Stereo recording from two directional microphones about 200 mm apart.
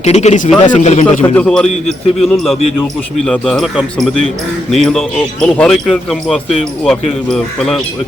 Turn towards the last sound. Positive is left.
turn(degrees=5)  # may be behind; listen again after turning